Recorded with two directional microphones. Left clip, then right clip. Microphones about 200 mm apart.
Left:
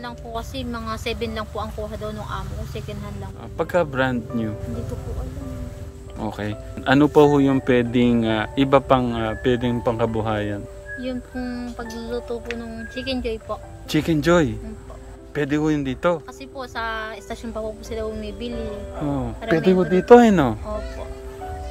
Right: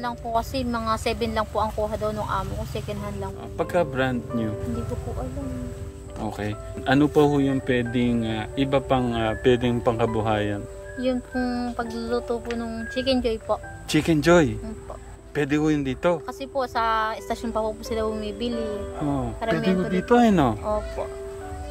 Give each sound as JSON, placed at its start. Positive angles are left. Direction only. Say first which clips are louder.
{"t": 0.0, "sound": "speech", "louder": "right 5 dB", "side_deg": -25}
{"t": 3.5, "sound": "speech", "louder": "left 3 dB", "side_deg": 5}
{"t": 6.2, "sound": "speech", "louder": "left 2 dB", "side_deg": 5}
{"t": 11.0, "sound": "speech", "louder": "right 5 dB", "side_deg": -25}
{"t": 13.8, "sound": "speech", "louder": "even", "side_deg": 0}
{"t": 16.5, "sound": "speech", "louder": "right 5 dB", "side_deg": -25}
{"t": 18.9, "sound": "speech", "louder": "left 3 dB", "side_deg": 0}
{"t": 19.4, "sound": "speech", "louder": "left 6 dB", "side_deg": -30}
{"t": 20.2, "sound": "speech", "louder": "left 4 dB", "side_deg": 5}